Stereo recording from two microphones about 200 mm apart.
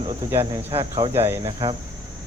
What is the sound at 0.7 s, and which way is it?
Speech, 25° right (ahead or behind).